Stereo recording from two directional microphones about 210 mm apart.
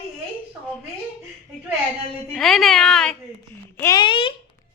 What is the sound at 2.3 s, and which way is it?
Speech, centre (ahead or behind).